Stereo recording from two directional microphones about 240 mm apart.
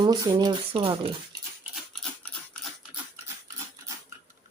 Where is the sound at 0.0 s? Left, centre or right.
Centre.